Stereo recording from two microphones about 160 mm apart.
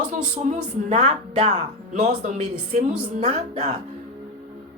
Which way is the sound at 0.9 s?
45° right (ahead or behind).